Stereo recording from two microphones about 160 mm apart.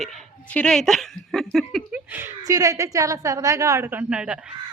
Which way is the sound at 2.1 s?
15° right (ahead or behind).